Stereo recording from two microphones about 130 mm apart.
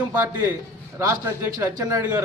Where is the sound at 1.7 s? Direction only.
30° right (ahead or behind).